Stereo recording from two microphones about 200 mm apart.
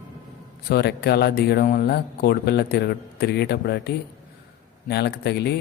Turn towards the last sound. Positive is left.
turn(degrees=55)  # may be behind; listen again after turning